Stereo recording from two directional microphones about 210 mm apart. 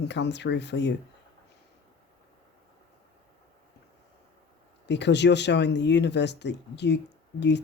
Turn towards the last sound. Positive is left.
turn(degrees=55)  # may be behind; listen again after turning